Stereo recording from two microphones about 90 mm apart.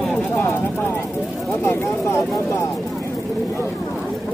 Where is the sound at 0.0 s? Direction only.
5° left (ahead or behind).